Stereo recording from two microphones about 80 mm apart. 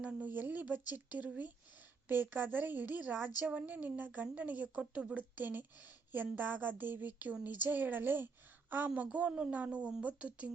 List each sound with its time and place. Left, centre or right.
0.0 s a woman's voice: centre
8.9 s a woman's voice: centre